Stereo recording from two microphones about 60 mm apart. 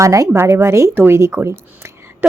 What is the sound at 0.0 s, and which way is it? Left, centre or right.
Speech, right.